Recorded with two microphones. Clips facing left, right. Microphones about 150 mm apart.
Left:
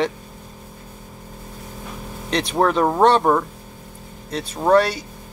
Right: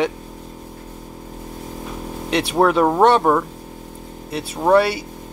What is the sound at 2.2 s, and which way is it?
Speech, 5° right (ahead or behind).